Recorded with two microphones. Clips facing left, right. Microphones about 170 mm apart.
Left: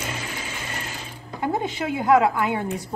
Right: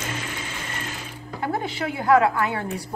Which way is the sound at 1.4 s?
20° left (ahead or behind).